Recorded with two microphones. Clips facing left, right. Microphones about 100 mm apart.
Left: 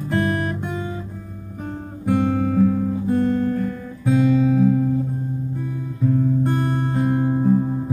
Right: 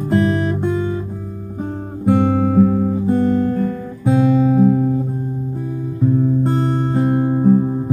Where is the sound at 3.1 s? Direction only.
20° right (ahead or behind).